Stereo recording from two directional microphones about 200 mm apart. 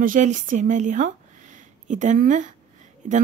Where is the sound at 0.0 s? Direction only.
40° right (ahead or behind).